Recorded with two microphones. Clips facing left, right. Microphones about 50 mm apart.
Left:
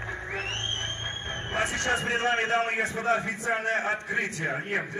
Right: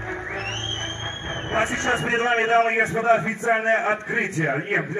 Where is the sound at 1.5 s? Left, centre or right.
Right.